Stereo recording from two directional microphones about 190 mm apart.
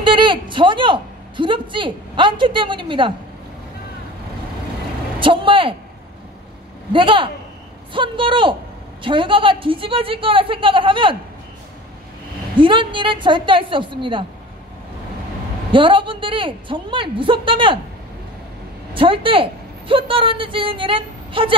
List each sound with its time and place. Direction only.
0.0 s a woman's voice: 25° right (ahead or behind)
5.2 s speech: 25° right (ahead or behind)
6.9 s speech: 25° right (ahead or behind)
12.5 s speech: 25° right (ahead or behind)
15.7 s speech: 25° right (ahead or behind)
18.9 s speech: 25° right (ahead or behind)